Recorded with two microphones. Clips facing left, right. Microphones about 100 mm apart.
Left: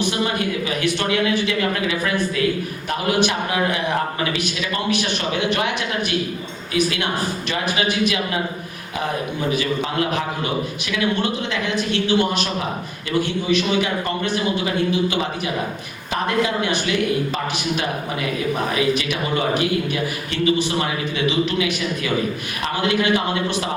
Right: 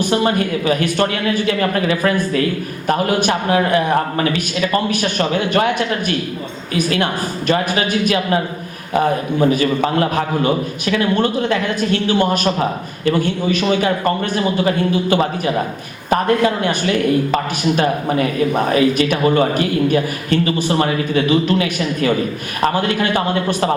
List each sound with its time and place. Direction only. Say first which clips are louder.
0.0 s a man's voice: right 5 dB; 45° right (ahead or behind)
5.5 s a man's voice: right 6 dB; 45° right (ahead or behind)
9.5 s a man's voice: right 6 dB; 45° right (ahead or behind)
16.0 s a man's voice: right 6 dB; 45° right (ahead or behind)
23.1 s a man's voice: right 3 dB; 50° right (ahead or behind)